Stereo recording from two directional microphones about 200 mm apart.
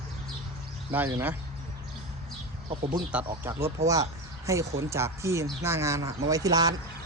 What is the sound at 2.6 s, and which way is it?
Speech, 30° right (ahead or behind).